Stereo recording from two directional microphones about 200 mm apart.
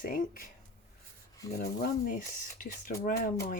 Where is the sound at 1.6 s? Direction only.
45° left (ahead or behind).